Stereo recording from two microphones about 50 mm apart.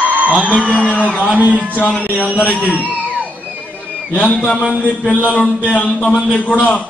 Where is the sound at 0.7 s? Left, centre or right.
Left.